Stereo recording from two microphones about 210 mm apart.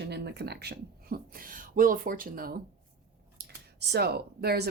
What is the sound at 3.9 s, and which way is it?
Speech, 50° right (ahead or behind).